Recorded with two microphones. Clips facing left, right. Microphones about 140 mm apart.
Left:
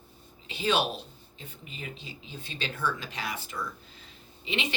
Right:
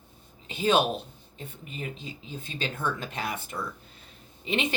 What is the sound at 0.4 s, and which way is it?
Speech, 45° right (ahead or behind).